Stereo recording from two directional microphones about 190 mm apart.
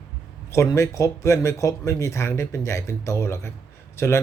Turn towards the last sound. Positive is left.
turn(degrees=15)  # may be behind; listen again after turning